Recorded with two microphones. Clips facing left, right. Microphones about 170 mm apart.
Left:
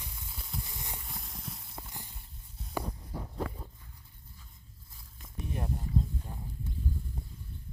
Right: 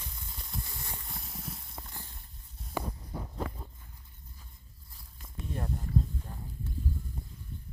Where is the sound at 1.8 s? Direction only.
15° left (ahead or behind).